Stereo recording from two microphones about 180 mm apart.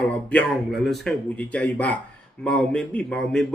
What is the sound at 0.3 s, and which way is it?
Speech, 5° left (ahead or behind).